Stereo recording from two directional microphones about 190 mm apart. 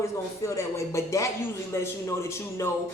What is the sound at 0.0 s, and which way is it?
Speech, 15° left (ahead or behind).